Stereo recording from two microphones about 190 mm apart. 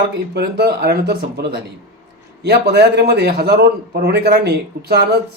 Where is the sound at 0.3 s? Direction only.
55° right (ahead or behind).